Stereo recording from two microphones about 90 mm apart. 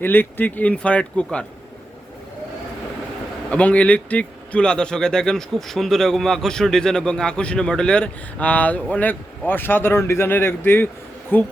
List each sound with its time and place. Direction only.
0.0 s speech: 20° left (ahead or behind)
3.5 s speech: 15° left (ahead or behind)